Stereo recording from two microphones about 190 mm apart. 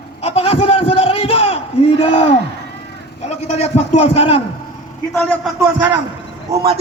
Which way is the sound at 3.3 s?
35° left (ahead or behind).